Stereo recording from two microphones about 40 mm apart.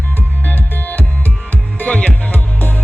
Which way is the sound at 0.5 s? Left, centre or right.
Left.